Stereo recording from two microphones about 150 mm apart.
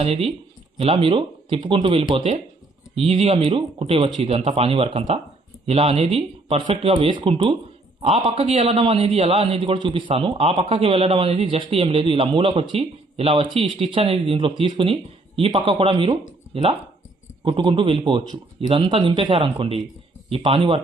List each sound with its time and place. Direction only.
0.0 s a man's voice: 40° right (ahead or behind)
17.6 s a man's voice: 35° right (ahead or behind)